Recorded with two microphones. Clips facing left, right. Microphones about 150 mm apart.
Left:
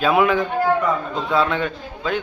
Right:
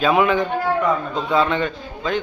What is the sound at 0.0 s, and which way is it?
Speech, 5° left (ahead or behind).